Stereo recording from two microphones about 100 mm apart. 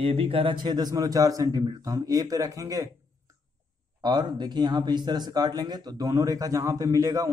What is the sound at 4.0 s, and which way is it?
Speech, 50° right (ahead or behind).